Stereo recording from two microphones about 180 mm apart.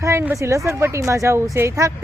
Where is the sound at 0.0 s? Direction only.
15° right (ahead or behind).